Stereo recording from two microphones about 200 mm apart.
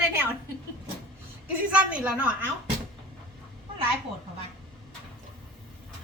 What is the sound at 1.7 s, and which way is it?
Speech, 5° right (ahead or behind).